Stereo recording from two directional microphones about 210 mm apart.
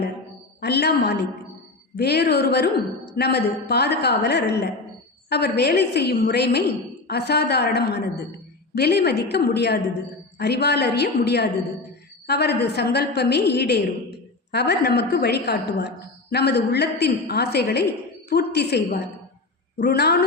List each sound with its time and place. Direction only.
0.6 s a woman's voice: 50° left (ahead or behind)